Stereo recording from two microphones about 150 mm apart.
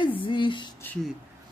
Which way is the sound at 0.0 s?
35° left (ahead or behind).